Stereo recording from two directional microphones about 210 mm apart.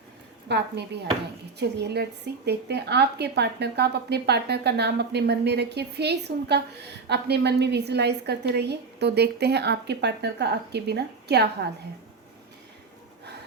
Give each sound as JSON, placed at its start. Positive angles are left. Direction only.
{"t": 0.4, "sound": "a woman's voice", "side_deg": -55}